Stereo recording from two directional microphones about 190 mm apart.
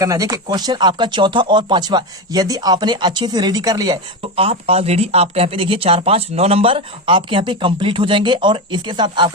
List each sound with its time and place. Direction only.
0.0 s speech: 15° right (ahead or behind)
4.4 s speech: 30° right (ahead or behind)